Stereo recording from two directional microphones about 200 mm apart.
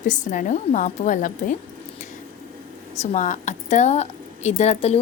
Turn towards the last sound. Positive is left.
turn(degrees=30)  # may be behind; listen again after turning